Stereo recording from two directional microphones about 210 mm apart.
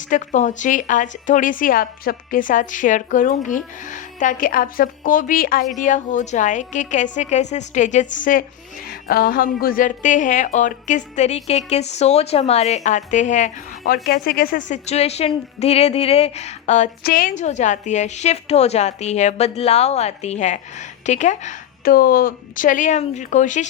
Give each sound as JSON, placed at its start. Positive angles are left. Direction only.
{"t": 0.1, "sound": "a woman's voice", "side_deg": 35}
{"t": 17.0, "sound": "a woman's voice", "side_deg": 45}